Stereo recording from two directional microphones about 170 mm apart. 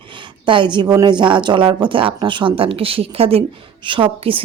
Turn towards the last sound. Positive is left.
turn(degrees=-30)  # may be behind; listen again after turning